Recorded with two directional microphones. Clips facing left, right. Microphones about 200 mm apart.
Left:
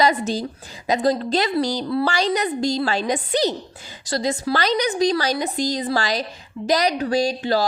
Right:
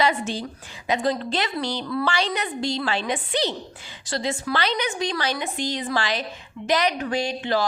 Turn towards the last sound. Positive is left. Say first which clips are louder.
# left 4 dB
turn(degrees=35)  # may be behind; listen again after turning